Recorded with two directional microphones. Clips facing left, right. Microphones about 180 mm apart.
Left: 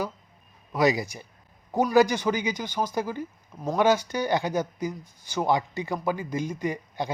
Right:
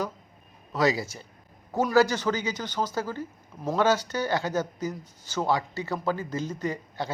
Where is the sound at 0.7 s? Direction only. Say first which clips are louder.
Left 2 dB; 15° left (ahead or behind).